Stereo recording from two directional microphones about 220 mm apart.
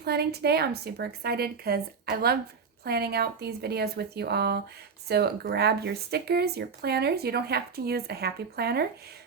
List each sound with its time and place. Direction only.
0.0 s speech: 45° right (ahead or behind)